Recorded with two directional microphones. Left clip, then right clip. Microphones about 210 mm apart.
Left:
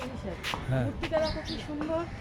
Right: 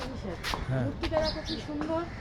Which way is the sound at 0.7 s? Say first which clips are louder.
Left 1 dB; 20° left (ahead or behind).